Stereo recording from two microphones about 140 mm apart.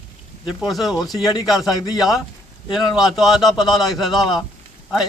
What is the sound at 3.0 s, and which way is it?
A man's voice, centre (ahead or behind).